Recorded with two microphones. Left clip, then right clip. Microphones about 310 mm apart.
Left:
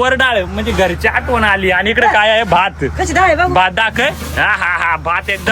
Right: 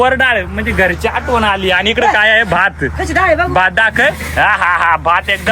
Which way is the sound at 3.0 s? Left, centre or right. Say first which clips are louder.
Left 1 dB; left.